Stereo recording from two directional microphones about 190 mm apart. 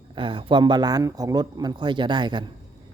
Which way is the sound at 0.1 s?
25° right (ahead or behind).